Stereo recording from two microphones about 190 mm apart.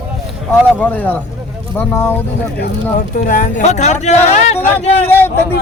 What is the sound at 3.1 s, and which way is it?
Speech, 45° left (ahead or behind).